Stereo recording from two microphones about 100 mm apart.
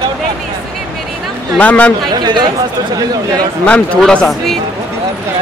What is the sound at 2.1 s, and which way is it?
Speech, 45° right (ahead or behind).